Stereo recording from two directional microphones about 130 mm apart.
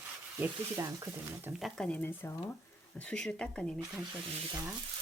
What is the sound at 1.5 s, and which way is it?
Speech, centre (ahead or behind).